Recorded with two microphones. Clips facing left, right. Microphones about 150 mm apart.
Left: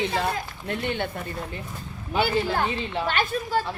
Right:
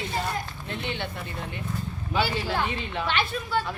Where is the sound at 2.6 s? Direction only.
40° left (ahead or behind).